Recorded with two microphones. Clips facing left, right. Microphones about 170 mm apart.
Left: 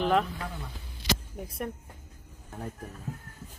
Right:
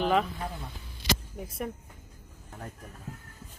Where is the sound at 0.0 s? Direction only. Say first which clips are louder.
Even; centre (ahead or behind).